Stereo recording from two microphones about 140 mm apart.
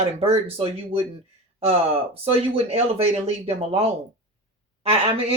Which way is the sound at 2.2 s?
45° right (ahead or behind).